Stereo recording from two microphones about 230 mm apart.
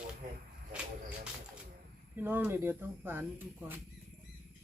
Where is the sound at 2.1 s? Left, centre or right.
Centre.